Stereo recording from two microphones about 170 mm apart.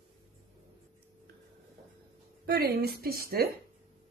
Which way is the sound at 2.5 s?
70° right (ahead or behind).